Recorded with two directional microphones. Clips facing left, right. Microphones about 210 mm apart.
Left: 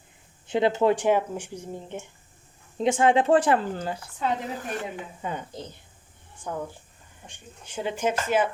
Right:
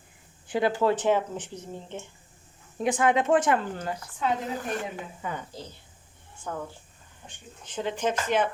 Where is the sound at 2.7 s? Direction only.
25° left (ahead or behind).